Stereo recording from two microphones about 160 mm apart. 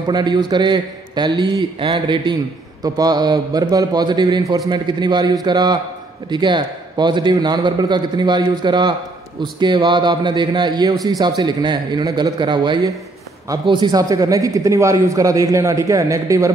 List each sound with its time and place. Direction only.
0.0 s a man's voice: 25° right (ahead or behind)